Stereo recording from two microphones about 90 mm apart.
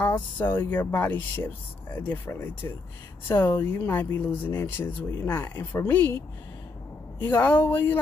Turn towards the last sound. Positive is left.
turn(degrees=25)  # may be behind; listen again after turning